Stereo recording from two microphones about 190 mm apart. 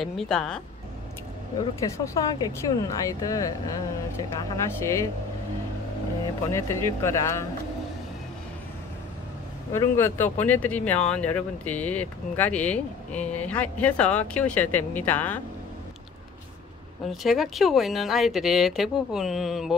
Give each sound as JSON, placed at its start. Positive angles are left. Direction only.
{"t": 0.0, "sound": "speech", "side_deg": 0}
{"t": 1.6, "sound": "speech", "side_deg": 20}
{"t": 6.5, "sound": "speech", "side_deg": 15}
{"t": 9.7, "sound": "speech", "side_deg": 10}
{"t": 17.0, "sound": "speech", "side_deg": 0}